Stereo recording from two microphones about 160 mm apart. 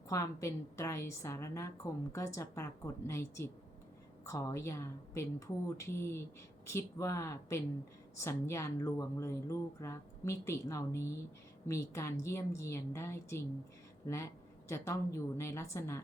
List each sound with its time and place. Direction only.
0.1 s a woman's voice: 20° left (ahead or behind)
14.7 s a woman's voice: 20° left (ahead or behind)